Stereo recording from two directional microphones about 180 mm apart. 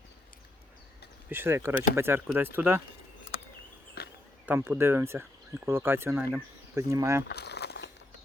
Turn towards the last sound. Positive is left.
turn(degrees=65)  # may be behind; listen again after turning